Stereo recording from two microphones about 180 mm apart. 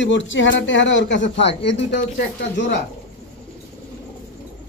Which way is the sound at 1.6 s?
75° left (ahead or behind).